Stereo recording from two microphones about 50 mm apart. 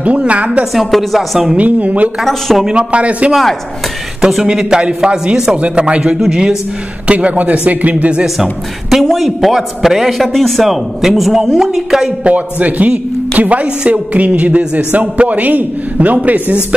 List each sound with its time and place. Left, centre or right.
0.0 s a man's voice: right
0.7 s a man's voice: centre
1.6 s a man's voice: right
2.2 s a man's voice: centre
2.7 s a man's voice: right
4.2 s speech: centre
5.6 s a man's voice: right
9.0 s a man's voice: centre
12.2 s a man's voice: right